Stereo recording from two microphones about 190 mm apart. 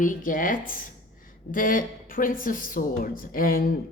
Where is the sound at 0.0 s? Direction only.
45° left (ahead or behind).